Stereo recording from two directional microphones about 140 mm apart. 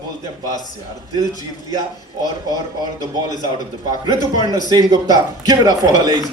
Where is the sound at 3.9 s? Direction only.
30° right (ahead or behind).